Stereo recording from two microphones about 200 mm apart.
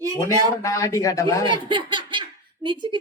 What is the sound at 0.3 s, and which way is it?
Speech, 15° left (ahead or behind).